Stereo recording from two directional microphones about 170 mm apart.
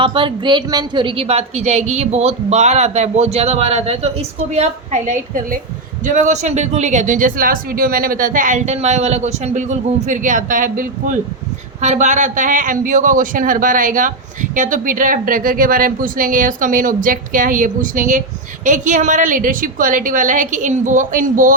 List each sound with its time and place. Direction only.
0.0 s speech: 30° right (ahead or behind); by 21.5 s 50° right (ahead or behind)